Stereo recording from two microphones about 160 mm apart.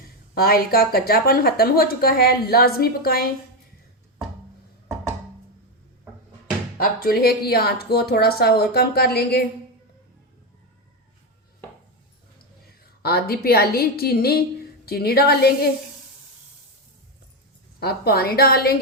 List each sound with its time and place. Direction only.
0.3 s a woman's voice: 70° left (ahead or behind)
6.7 s speech: 65° left (ahead or behind)
12.8 s a woman's voice: 75° left (ahead or behind)
17.7 s a woman's voice: 75° left (ahead or behind)